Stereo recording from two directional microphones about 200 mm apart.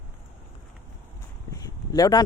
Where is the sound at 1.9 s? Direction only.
20° left (ahead or behind).